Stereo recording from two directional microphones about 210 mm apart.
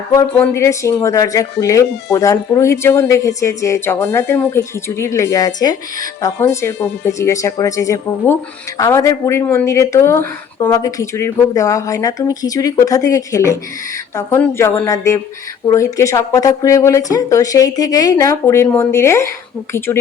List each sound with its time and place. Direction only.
0.1 s speech: 15° left (ahead or behind)